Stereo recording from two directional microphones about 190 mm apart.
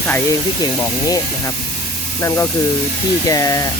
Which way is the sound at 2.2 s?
15° left (ahead or behind).